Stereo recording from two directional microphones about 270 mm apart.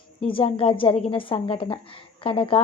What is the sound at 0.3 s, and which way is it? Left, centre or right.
Speech, centre.